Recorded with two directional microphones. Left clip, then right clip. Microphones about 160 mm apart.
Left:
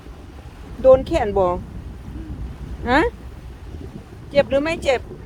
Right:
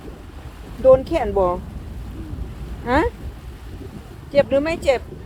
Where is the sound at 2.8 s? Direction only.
20° left (ahead or behind).